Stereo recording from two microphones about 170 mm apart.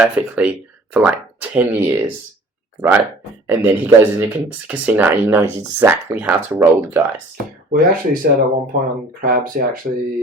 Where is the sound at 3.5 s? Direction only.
10° right (ahead or behind).